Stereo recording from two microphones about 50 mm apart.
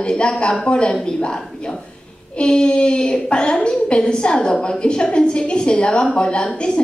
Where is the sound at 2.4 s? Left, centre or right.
Centre.